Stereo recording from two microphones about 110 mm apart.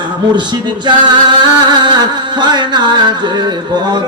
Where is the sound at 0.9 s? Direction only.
40° right (ahead or behind).